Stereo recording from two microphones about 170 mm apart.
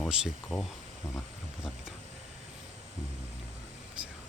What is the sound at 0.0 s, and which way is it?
Speech, 5° right (ahead or behind).